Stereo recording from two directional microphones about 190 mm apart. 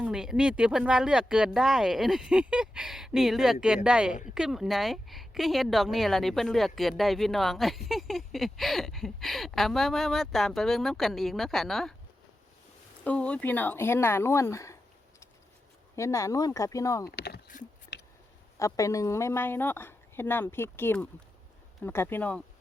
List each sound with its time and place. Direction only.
0.0 s speech: 5° right (ahead or behind)
13.1 s a woman's voice: 5° left (ahead or behind)
16.0 s a woman's voice: 15° left (ahead or behind)
17.1 s a sound: 60° left (ahead or behind)
18.6 s a woman's voice: 15° left (ahead or behind)